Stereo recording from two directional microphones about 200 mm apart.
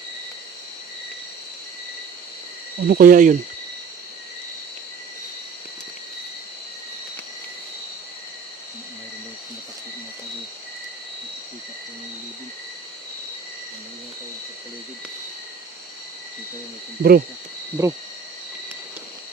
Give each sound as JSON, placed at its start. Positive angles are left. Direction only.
{"t": 2.8, "sound": "speech", "side_deg": -45}
{"t": 17.0, "sound": "speech", "side_deg": -50}
{"t": 17.8, "sound": "cricket", "side_deg": -15}